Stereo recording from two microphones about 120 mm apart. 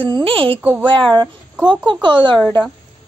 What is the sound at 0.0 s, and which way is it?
Speech, 45° right (ahead or behind).